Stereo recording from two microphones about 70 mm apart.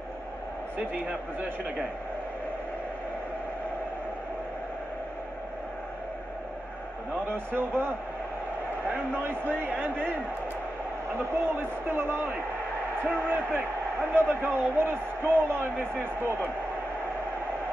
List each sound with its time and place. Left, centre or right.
0.7 s a man's voice: right
7.5 s speech: right
11.3 s a man's voice: right